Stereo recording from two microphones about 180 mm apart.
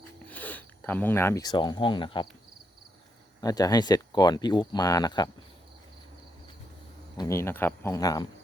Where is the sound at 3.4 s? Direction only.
20° left (ahead or behind).